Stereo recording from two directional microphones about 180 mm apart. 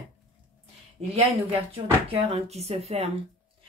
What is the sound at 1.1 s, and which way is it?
Speech, 30° right (ahead or behind).